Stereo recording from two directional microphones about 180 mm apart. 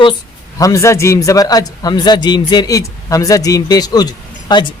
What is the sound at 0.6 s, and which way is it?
A man's voice, 15° left (ahead or behind).